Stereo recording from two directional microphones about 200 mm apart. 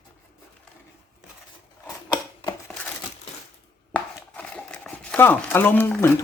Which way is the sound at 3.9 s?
5° left (ahead or behind).